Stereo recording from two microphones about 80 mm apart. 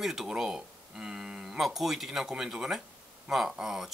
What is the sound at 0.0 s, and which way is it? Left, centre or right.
Speech, centre.